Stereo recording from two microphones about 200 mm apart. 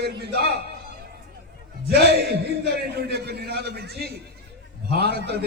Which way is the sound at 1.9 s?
50° right (ahead or behind).